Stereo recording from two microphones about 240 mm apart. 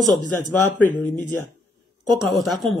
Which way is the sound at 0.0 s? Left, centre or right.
Left.